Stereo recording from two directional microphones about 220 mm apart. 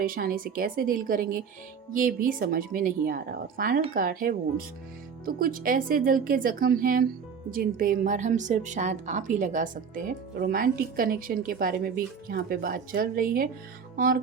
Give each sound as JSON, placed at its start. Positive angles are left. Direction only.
{"t": 0.0, "sound": "a woman's voice", "side_deg": -40}
{"t": 13.9, "sound": "music", "side_deg": -40}